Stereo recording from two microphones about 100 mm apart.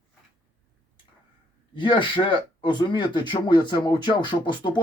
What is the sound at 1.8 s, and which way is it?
Speech, 55° left (ahead or behind).